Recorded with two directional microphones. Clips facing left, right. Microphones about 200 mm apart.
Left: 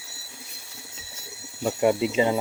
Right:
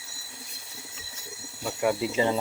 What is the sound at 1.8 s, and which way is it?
Speech, 20° left (ahead or behind).